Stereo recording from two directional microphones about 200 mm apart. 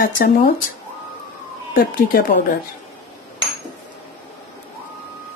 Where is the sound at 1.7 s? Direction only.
50° left (ahead or behind).